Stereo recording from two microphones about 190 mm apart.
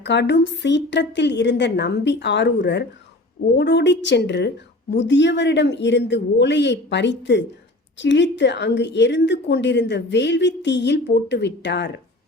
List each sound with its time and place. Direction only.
0.0 s a woman's voice: 65° left (ahead or behind)